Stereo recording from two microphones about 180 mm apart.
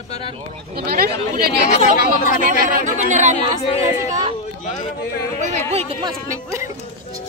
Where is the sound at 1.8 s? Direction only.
45° left (ahead or behind).